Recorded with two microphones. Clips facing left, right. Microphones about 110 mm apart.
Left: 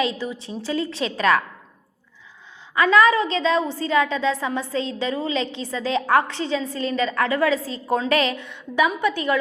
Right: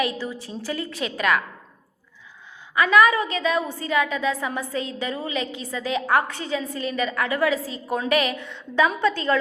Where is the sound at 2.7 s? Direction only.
30° left (ahead or behind).